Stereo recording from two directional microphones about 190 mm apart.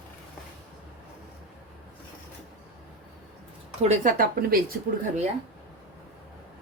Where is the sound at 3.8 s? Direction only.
40° right (ahead or behind).